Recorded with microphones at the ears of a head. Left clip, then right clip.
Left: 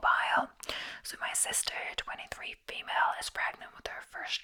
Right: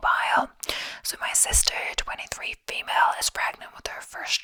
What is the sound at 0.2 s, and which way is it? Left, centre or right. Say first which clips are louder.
Speech: right 6 dB; right.